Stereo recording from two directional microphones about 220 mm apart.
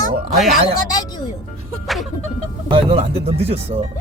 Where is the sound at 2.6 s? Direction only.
25° right (ahead or behind).